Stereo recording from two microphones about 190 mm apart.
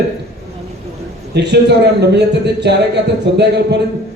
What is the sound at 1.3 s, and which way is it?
A man's voice, 65° right (ahead or behind).